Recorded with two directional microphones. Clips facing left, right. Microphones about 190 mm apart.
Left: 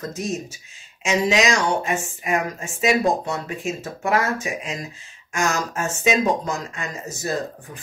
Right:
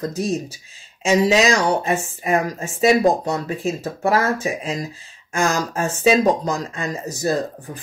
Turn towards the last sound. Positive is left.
turn(degrees=-35)  # may be behind; listen again after turning